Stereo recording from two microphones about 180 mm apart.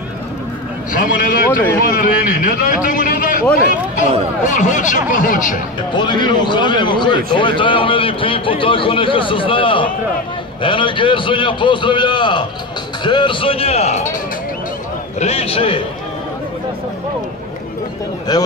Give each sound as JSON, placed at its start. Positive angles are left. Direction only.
{"t": 0.9, "sound": "a man's voice", "side_deg": 50}
{"t": 4.5, "sound": "a man's voice", "side_deg": 45}
{"t": 5.9, "sound": "a man's voice", "side_deg": 25}
{"t": 15.1, "sound": "speech", "side_deg": 35}
{"t": 18.3, "sound": "a man's voice", "side_deg": 20}